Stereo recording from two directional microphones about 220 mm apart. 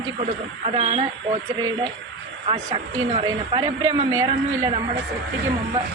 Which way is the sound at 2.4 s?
25° right (ahead or behind).